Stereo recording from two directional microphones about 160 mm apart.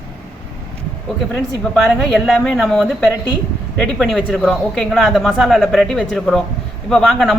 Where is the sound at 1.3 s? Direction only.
Centre (ahead or behind).